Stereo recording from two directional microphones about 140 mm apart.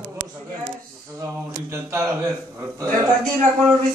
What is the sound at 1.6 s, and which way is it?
Speech, 20° right (ahead or behind).